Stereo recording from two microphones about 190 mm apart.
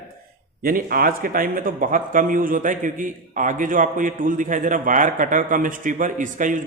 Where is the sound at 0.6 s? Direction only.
50° right (ahead or behind).